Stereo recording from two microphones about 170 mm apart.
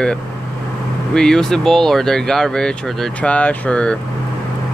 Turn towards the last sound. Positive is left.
turn(degrees=5)  # may be behind; listen again after turning